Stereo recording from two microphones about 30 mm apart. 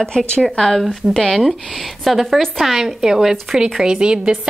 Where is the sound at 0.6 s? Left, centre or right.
Centre.